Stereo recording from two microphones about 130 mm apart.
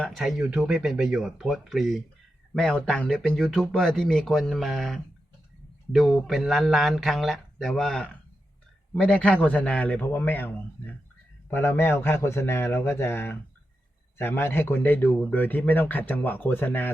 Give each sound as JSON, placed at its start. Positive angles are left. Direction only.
{"t": 0.0, "sound": "a man's voice", "side_deg": 0}